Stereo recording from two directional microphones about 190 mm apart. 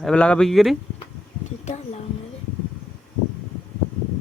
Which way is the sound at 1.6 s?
35° left (ahead or behind).